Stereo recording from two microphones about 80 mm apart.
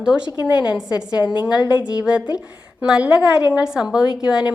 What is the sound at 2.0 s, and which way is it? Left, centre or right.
A woman's voice, centre.